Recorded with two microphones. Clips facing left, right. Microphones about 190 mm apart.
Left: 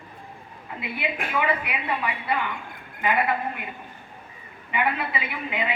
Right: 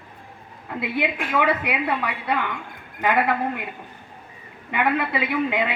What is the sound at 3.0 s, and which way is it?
Speech, 75° right (ahead or behind).